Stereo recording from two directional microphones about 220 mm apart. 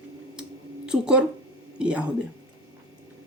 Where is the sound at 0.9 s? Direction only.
5° right (ahead or behind).